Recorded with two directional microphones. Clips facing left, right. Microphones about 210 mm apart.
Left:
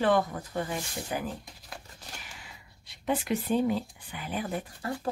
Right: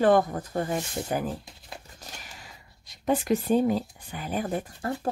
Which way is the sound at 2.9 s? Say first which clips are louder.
Right 5 dB; 40° right (ahead or behind).